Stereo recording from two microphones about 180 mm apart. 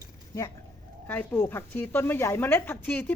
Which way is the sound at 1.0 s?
10° left (ahead or behind).